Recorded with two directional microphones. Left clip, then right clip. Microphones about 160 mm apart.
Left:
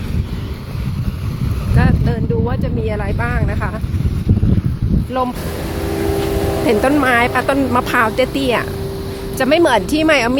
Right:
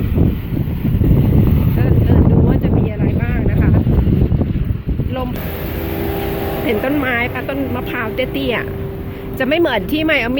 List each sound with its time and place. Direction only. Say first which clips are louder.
3.2 s speech: even; 10° left (ahead or behind)
6.7 s speech: left 4 dB; 15° left (ahead or behind)